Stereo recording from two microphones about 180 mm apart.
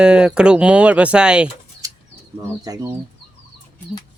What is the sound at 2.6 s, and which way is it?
Speech, 20° right (ahead or behind).